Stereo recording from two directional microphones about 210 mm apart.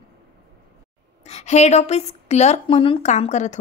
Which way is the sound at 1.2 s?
30° left (ahead or behind).